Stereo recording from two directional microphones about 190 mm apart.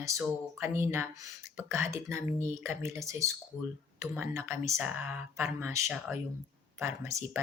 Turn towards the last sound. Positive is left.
turn(degrees=-15)  # may be behind; listen again after turning